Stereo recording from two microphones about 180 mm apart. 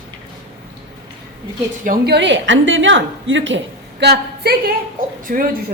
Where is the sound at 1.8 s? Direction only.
50° right (ahead or behind).